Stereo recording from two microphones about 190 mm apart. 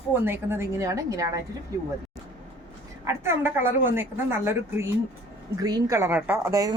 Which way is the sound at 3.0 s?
15° right (ahead or behind).